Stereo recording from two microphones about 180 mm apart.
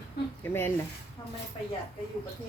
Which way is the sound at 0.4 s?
10° left (ahead or behind).